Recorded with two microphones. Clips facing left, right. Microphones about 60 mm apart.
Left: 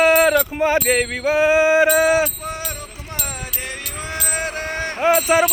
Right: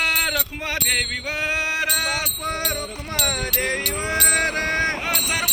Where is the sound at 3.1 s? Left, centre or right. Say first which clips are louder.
Right 6 dB; right.